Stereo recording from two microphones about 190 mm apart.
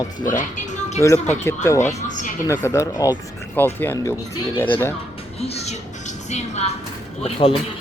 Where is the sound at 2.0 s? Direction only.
40° left (ahead or behind).